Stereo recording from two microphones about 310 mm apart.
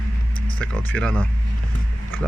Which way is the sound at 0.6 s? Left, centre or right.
Centre.